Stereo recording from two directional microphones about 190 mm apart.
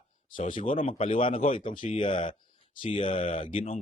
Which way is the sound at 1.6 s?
45° left (ahead or behind).